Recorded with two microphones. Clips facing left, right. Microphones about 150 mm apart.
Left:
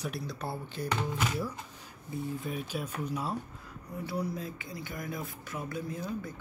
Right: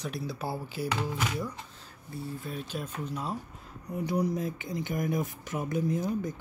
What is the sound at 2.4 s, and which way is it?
Speech, 10° left (ahead or behind).